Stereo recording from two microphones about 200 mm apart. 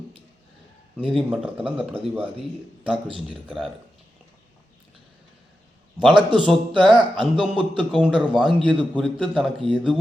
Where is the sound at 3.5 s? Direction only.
Centre (ahead or behind).